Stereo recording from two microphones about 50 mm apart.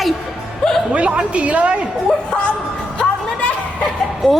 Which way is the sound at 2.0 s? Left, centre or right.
Centre.